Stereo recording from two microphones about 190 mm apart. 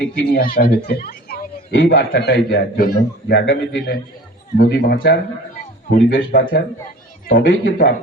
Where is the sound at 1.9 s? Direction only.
55° left (ahead or behind).